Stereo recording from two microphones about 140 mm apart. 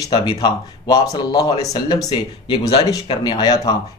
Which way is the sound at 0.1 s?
30° left (ahead or behind).